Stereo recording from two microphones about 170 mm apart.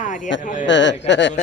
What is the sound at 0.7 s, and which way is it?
Speech, 90° left.